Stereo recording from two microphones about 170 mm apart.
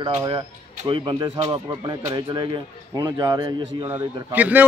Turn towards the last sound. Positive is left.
turn(degrees=-10)  # may be behind; listen again after turning